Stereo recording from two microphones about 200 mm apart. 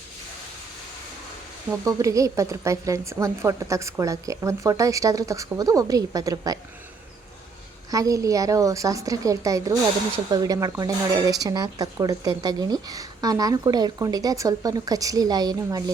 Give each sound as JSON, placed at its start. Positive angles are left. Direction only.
{"t": 1.8, "sound": "speech", "side_deg": -15}
{"t": 7.9, "sound": "speech", "side_deg": -15}